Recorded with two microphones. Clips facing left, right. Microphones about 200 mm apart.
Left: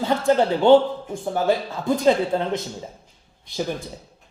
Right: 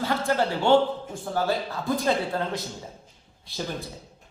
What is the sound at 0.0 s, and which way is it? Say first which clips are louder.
A man's voice: left 6 dB; 20° left (ahead or behind).